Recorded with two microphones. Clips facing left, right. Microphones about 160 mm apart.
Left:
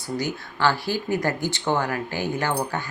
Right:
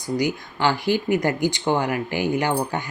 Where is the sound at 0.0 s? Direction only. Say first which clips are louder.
Right 4 dB; 15° right (ahead or behind).